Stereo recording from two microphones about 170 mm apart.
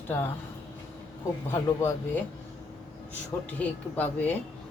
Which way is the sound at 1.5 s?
15° left (ahead or behind).